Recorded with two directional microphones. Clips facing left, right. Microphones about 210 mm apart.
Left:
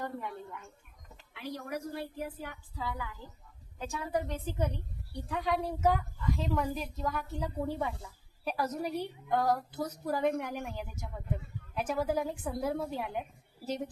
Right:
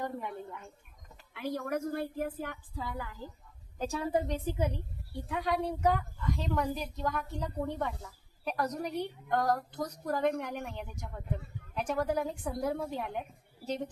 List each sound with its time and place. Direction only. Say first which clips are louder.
0.0 s a woman's voice: right 1 dB; 20° right (ahead or behind)
1.3 s a woman's voice: right 5 dB; 50° right (ahead or behind)
3.8 s a woman's voice: right 3 dB; 35° right (ahead or behind); by 4.7 s 10° right (ahead or behind)
5.1 s a woman's voice: even; centre (ahead or behind)